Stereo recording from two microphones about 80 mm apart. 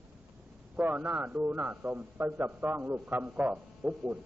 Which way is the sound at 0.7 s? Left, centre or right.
Right.